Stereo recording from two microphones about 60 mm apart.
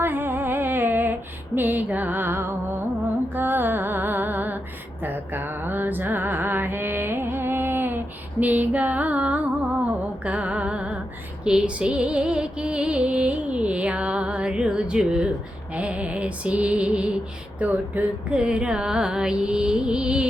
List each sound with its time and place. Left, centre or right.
0.0 s music: right; by 20.2 s centre